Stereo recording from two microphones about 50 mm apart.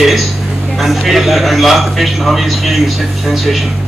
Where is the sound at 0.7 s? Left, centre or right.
Centre.